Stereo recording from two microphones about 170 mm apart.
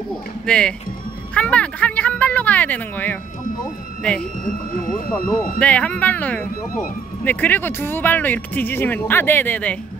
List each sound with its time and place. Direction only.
0.1 s speech: 5° left (ahead or behind)
4.5 s speech: 50° left (ahead or behind)
5.6 s speech: 10° left (ahead or behind)